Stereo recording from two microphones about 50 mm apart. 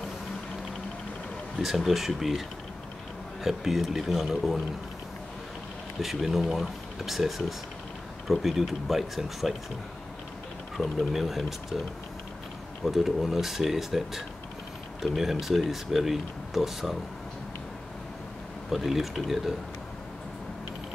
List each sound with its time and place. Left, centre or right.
1.6 s speech: centre
3.4 s speech: centre
5.9 s speech: centre
10.8 s speech: centre
12.8 s speech: centre
18.7 s speech: centre